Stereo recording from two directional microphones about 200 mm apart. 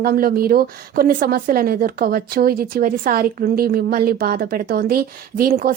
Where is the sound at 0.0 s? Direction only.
50° right (ahead or behind).